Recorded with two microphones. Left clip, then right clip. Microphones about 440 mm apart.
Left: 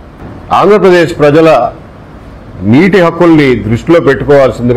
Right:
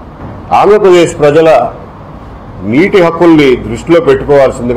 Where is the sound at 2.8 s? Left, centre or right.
Left.